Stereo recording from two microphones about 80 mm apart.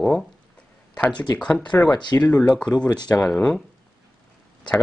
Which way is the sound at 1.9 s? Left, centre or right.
Left.